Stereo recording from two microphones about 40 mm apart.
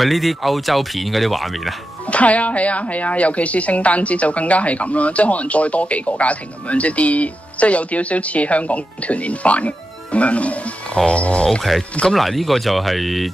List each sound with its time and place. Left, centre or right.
0.0 s speech: centre
2.0 s speech: left
12.1 s speech: centre